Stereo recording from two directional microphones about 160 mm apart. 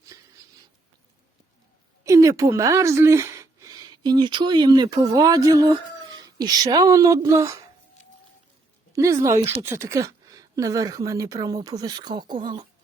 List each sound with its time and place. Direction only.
2.0 s speech: 20° right (ahead or behind)
8.9 s speech: 20° right (ahead or behind)